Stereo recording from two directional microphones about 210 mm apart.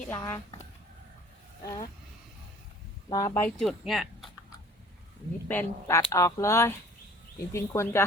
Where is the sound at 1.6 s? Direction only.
15° left (ahead or behind).